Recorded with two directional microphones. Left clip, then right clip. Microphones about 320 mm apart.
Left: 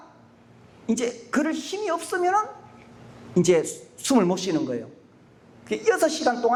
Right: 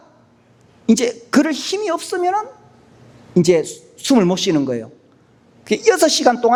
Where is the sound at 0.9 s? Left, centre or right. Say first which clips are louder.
Right 9 dB; right.